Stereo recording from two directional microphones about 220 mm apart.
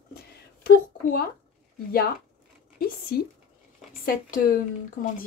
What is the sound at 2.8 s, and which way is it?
Speech, 45° left (ahead or behind).